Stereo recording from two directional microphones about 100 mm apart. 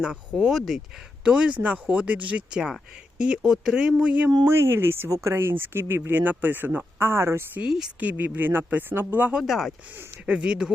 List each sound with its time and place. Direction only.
0.0 s speech: 10° right (ahead or behind)
4.4 s speech: 25° right (ahead or behind)
7.6 s speech: 10° right (ahead or behind)
9.4 s speech: centre (ahead or behind)
10.0 s speech: 15° right (ahead or behind)